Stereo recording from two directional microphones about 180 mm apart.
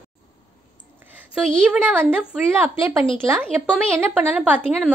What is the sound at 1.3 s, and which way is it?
A woman's voice, 5° right (ahead or behind).